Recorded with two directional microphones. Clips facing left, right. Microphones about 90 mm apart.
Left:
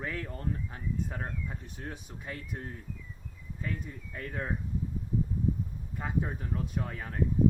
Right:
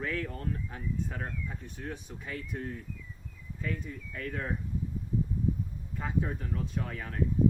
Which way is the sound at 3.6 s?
25° left (ahead or behind).